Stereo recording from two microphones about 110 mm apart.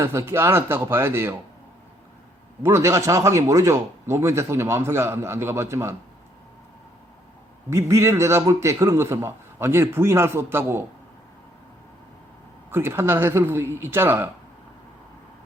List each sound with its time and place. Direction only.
0.0 s a man's voice: 25° right (ahead or behind)
2.6 s a man's voice: 25° right (ahead or behind)
7.7 s a man's voice: 25° right (ahead or behind)
12.7 s a man's voice: 20° right (ahead or behind)